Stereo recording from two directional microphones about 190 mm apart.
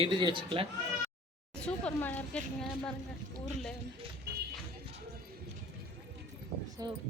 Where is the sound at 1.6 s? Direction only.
5° left (ahead or behind).